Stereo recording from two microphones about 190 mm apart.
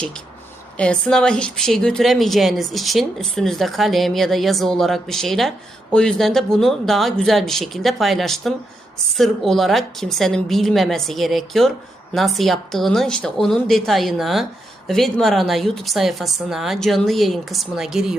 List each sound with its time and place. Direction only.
0.8 s a woman's voice: 5° left (ahead or behind)